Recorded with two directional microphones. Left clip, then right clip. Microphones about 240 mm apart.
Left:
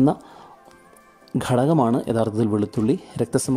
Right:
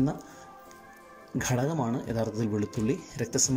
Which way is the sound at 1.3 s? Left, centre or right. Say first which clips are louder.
Left 10 dB; centre.